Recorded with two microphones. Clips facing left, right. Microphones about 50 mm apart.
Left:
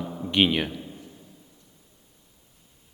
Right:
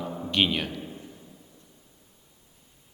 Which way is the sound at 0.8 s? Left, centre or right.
Centre.